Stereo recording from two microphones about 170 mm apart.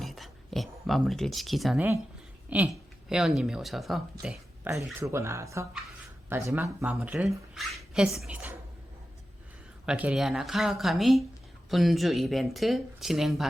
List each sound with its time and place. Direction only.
0.0 s a sound: centre (ahead or behind)
2.5 s speech: 5° right (ahead or behind)
4.9 s speech: 15° right (ahead or behind)
9.8 s speech: 5° right (ahead or behind)